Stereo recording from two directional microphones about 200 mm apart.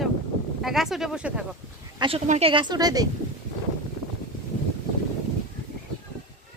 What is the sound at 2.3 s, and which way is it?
Speech, 30° right (ahead or behind).